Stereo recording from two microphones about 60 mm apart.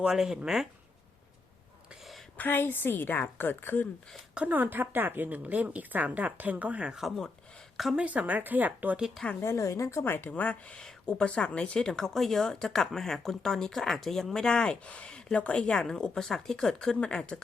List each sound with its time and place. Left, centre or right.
0.0 s speech: centre
2.4 s a woman's voice: left
4.4 s a woman's voice: right
9.4 s a woman's voice: left
10.0 s a woman's voice: left
10.3 s speech: left
10.8 s speech: centre